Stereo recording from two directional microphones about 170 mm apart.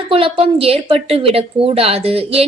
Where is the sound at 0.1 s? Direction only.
35° right (ahead or behind).